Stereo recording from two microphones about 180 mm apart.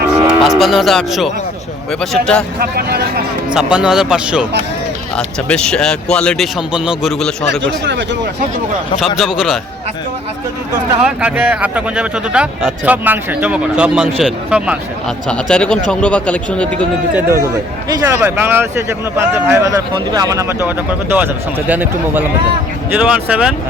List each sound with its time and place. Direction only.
0.3 s speech: centre (ahead or behind)
2.6 s speech: 60° right (ahead or behind)
3.5 s speech: 5° right (ahead or behind)
7.6 s speech: 80° right
9.1 s speech: centre (ahead or behind)
11.0 s speech: 5° right (ahead or behind)
17.2 s speech: 15° right (ahead or behind)